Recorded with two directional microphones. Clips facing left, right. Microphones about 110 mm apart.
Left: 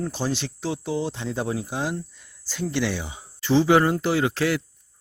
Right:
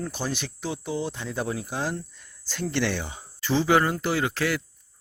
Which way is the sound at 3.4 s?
25° left (ahead or behind).